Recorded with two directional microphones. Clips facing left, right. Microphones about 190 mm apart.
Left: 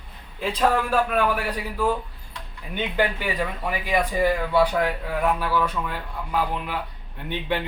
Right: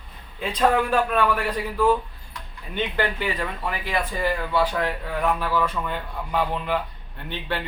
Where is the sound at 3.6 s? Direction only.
15° left (ahead or behind).